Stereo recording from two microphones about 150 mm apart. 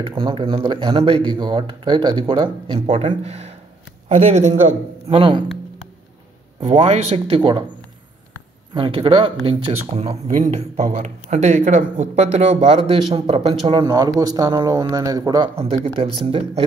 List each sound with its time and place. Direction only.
0.0 s a man's voice: 35° right (ahead or behind)
3.1 s speech: 45° right (ahead or behind)
6.6 s a man's voice: 45° right (ahead or behind)
8.7 s a man's voice: 35° right (ahead or behind)
13.7 s speech: 25° right (ahead or behind)
15.5 s a man's voice: 40° right (ahead or behind)